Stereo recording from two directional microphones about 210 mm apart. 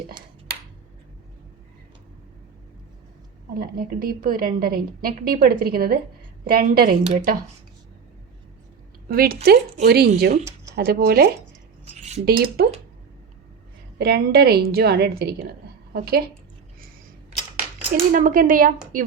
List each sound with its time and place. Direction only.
3.5 s a woman's voice: 45° right (ahead or behind)
7.0 s speech: 35° right (ahead or behind)
9.0 s a woman's voice: 45° right (ahead or behind)
14.0 s a woman's voice: 50° right (ahead or behind)
17.9 s speech: 40° right (ahead or behind)